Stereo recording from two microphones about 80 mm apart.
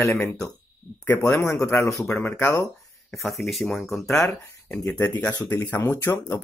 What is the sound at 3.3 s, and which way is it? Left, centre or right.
Speech, centre.